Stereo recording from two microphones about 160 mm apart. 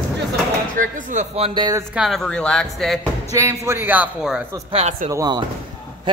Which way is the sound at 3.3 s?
15° right (ahead or behind).